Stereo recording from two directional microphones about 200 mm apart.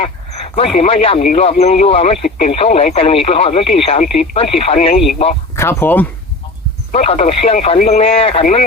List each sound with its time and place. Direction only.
0.3 s speech: 30° left (ahead or behind)
5.5 s speech: 10° left (ahead or behind)
6.9 s speech: 30° left (ahead or behind)